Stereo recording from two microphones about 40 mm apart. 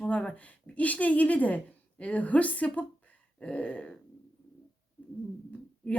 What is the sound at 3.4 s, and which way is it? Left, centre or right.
Speech, left.